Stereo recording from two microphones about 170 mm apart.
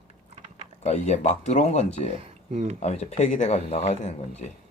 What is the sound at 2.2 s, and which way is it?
Speech, 40° right (ahead or behind).